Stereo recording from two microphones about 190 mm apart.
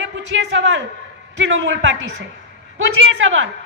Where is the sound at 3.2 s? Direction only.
90° right.